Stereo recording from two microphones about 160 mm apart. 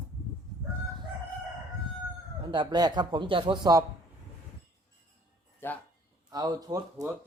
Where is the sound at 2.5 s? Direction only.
25° right (ahead or behind).